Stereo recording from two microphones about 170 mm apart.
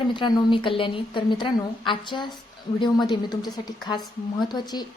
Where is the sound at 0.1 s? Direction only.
30° left (ahead or behind).